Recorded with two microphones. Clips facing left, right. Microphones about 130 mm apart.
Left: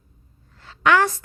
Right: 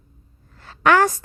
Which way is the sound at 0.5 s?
45° right (ahead or behind).